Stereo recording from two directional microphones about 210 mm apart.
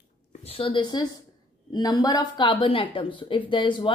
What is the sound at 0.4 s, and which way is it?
Speech, 25° left (ahead or behind).